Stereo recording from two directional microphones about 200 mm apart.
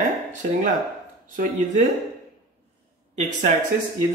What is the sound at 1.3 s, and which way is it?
Speech, 40° right (ahead or behind).